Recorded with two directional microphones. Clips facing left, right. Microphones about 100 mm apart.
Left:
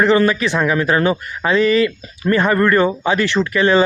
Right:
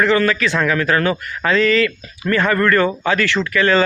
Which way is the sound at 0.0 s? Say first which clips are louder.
Left 2 dB; 20° left (ahead or behind).